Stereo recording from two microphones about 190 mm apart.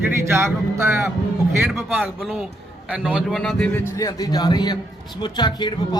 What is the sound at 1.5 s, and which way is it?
Speech, 15° right (ahead or behind).